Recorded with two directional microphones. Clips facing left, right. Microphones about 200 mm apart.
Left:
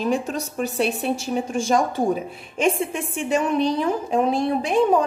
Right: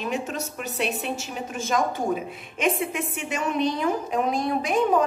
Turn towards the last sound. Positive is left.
turn(degrees=30)  # may be behind; listen again after turning